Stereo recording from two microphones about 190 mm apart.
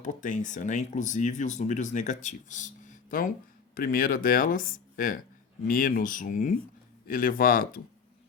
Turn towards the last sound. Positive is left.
turn(degrees=50)  # may be behind; listen again after turning